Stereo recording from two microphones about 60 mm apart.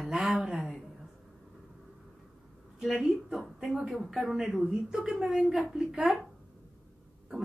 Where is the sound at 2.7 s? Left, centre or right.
Centre.